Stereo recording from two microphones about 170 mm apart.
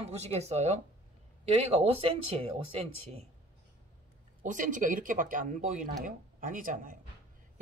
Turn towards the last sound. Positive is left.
turn(degrees=-50)  # may be behind; listen again after turning